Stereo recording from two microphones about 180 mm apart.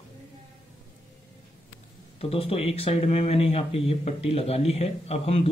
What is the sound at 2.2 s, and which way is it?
Speech, 30° left (ahead or behind).